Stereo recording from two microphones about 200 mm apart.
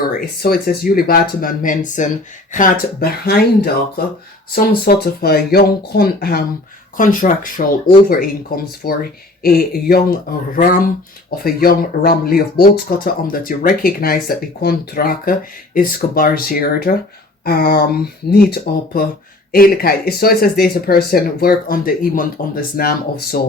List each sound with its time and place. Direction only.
0.1 s speech: 50° left (ahead or behind)